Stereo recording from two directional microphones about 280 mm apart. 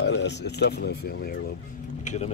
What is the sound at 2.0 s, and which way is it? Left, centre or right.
Vehicle, left.